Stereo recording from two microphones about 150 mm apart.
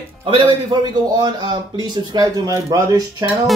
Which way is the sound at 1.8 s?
30° right (ahead or behind).